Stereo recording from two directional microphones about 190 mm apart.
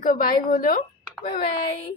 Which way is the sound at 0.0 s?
45° left (ahead or behind).